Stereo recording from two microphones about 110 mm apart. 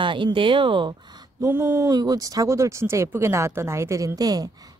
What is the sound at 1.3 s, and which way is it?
Speech, 25° right (ahead or behind).